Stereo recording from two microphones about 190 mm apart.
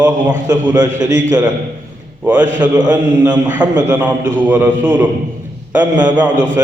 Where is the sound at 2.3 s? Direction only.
10° right (ahead or behind).